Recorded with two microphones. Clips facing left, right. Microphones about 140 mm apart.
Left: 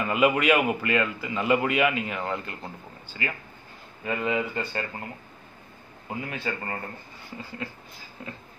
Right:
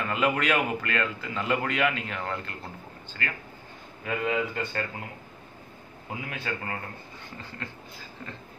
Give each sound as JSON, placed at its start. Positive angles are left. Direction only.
{"t": 0.0, "sound": "a man's voice", "side_deg": 10}
{"t": 6.0, "sound": "speech", "side_deg": 0}